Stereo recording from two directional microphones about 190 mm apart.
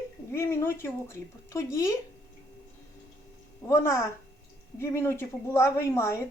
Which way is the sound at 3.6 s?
15° left (ahead or behind).